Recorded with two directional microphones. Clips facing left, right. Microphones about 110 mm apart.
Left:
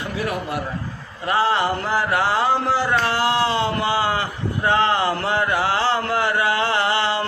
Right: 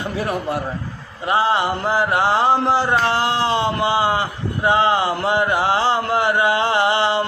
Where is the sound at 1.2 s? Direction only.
20° right (ahead or behind).